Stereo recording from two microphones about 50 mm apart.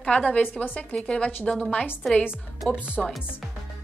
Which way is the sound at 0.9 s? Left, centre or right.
Centre.